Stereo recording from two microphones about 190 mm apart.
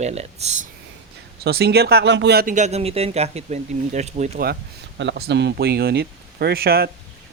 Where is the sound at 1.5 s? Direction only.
55° right (ahead or behind); by 4.4 s 35° right (ahead or behind).